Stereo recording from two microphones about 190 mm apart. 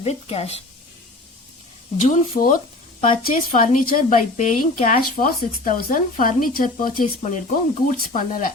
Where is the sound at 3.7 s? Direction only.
45° left (ahead or behind).